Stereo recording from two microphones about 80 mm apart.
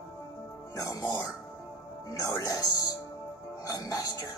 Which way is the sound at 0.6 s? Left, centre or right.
Left.